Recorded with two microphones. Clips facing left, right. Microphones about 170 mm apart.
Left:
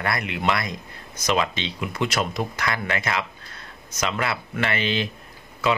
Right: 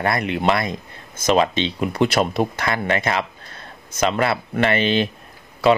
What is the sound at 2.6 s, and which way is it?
Speech, 30° right (ahead or behind).